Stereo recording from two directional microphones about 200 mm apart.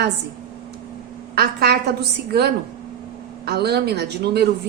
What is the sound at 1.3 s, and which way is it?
A woman's voice, 55° right (ahead or behind).